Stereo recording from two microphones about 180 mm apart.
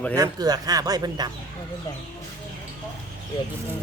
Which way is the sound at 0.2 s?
20° right (ahead or behind).